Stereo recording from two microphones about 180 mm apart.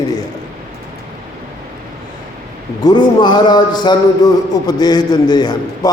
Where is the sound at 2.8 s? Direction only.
25° left (ahead or behind).